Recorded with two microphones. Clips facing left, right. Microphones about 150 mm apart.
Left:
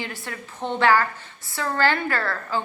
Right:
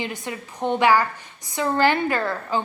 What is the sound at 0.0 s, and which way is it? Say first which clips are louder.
A woman's voice: right 4 dB; 20° right (ahead or behind).